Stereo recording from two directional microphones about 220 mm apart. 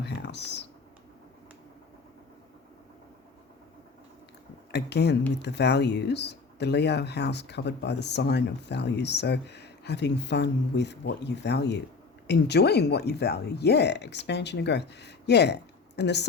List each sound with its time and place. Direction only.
0.0 s computer keyboard: 50° left (ahead or behind)
4.7 s speech: 50° left (ahead or behind)